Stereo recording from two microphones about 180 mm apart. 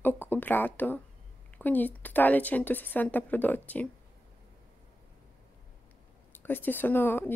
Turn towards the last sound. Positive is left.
turn(degrees=10)  # may be behind; listen again after turning